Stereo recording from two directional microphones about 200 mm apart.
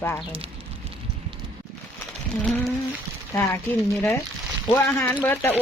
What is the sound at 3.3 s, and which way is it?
Speech, 10° left (ahead or behind).